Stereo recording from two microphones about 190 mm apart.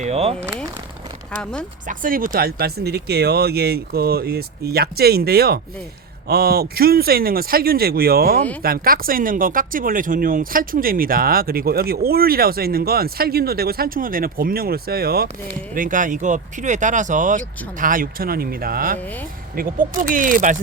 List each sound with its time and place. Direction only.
0.0 s speech: 35° right (ahead or behind)
1.4 s speech: 5° left (ahead or behind)
1.9 s speech: 45° right (ahead or behind)